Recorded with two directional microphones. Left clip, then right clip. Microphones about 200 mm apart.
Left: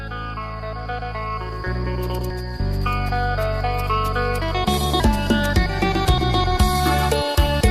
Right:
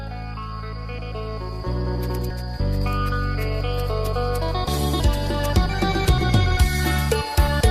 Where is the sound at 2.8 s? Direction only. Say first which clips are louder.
Left 5 dB; centre (ahead or behind).